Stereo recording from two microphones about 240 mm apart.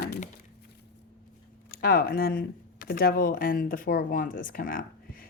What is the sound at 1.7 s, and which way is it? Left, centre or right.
Speech, left.